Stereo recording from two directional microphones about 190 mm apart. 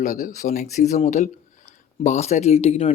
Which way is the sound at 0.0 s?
45° left (ahead or behind).